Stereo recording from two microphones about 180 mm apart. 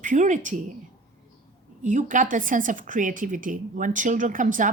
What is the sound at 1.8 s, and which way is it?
A woman's voice, 45° right (ahead or behind).